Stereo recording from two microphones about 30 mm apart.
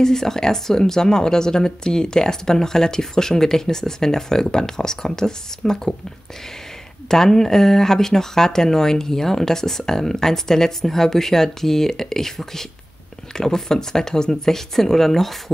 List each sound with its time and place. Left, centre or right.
0.0 s speech: centre
7.1 s speech: centre